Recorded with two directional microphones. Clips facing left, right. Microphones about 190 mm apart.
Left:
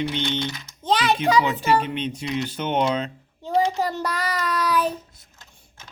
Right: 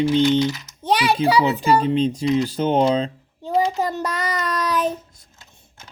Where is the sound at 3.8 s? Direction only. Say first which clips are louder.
Right 2 dB; 15° right (ahead or behind).